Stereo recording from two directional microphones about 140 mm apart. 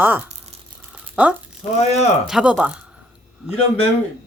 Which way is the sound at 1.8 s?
50° left (ahead or behind).